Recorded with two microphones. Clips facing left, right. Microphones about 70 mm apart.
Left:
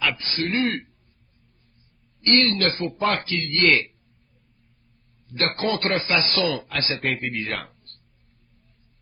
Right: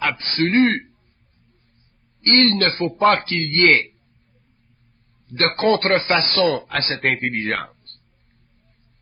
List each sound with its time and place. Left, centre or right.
0.0 s a man's voice: right
2.2 s a man's voice: right
5.3 s a man's voice: right